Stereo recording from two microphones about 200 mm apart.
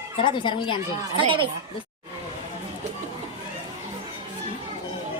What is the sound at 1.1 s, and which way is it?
Speech, 25° right (ahead or behind).